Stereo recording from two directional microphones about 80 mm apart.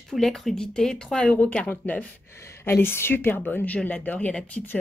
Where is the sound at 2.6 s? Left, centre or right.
Left.